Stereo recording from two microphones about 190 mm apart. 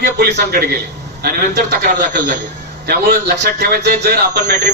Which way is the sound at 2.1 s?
45° right (ahead or behind).